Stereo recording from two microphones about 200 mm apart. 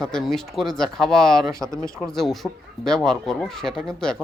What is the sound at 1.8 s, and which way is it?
Speech, 15° right (ahead or behind).